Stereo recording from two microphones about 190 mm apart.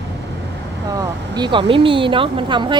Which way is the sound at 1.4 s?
25° right (ahead or behind).